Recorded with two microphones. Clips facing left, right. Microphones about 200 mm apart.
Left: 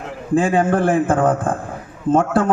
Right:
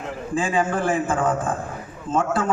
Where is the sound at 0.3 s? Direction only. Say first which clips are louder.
Left 7 dB; 55° left (ahead or behind).